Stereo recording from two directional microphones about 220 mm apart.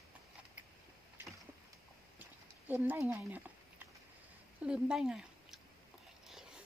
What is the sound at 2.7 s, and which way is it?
Speech, 10° right (ahead or behind).